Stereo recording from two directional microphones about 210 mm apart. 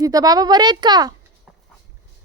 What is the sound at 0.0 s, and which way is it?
A woman's voice, 15° right (ahead or behind).